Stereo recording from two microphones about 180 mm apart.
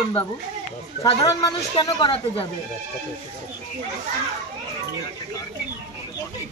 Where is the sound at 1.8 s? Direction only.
20° left (ahead or behind).